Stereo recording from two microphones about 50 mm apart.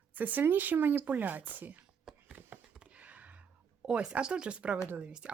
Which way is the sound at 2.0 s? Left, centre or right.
Centre.